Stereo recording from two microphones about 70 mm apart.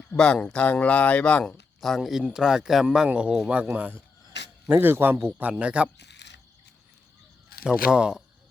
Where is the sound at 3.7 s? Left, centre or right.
Right.